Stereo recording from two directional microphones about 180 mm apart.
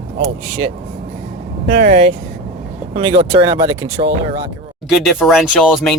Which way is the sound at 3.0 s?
30° right (ahead or behind).